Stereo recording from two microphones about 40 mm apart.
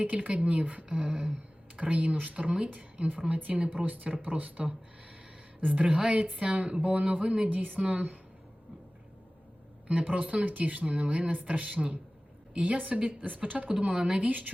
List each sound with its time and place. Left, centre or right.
0.0 s speech: right
0.9 s a woman's voice: right
6.0 s speech: right
10.0 s a woman's voice: right
13.7 s speech: right
14.3 s a woman's voice: right